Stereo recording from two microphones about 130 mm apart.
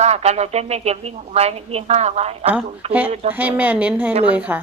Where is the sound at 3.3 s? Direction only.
15° right (ahead or behind).